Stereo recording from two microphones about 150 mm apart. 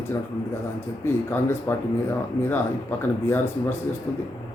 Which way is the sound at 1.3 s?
15° left (ahead or behind).